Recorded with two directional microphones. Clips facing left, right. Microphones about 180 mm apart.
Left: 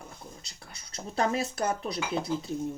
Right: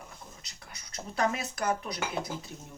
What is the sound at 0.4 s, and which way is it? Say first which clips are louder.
Speech: left 1 dB; 30° left (ahead or behind).